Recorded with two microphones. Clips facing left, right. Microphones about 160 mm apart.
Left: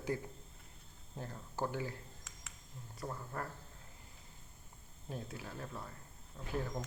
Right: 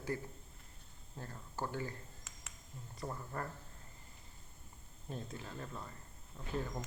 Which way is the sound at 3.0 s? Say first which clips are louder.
Even; centre (ahead or behind).